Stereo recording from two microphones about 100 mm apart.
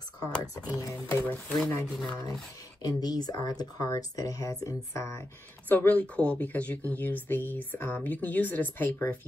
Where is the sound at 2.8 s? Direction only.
40° left (ahead or behind).